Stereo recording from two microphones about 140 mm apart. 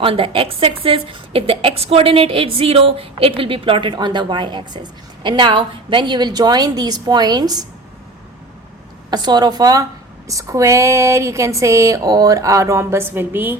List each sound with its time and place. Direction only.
0.0 s a woman's voice: 40° right (ahead or behind)
9.0 s speech: 30° right (ahead or behind); by 13.6 s 15° right (ahead or behind)